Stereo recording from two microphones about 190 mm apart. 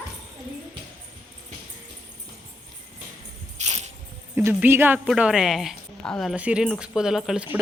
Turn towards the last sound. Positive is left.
turn(degrees=-5)  # may be behind; listen again after turning